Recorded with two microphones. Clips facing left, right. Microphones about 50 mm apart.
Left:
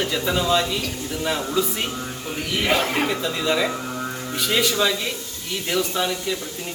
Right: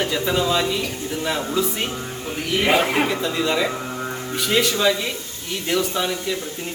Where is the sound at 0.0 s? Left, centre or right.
Centre.